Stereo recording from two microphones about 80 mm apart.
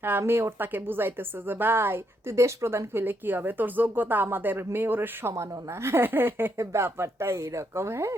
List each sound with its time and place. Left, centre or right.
0.0 s a woman's voice: right
5.3 s a woman's voice: right